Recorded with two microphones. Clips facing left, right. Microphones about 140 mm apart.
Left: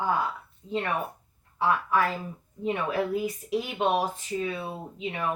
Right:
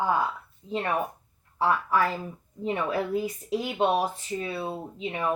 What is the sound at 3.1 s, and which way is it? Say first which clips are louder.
Speech: even; 30° right (ahead or behind).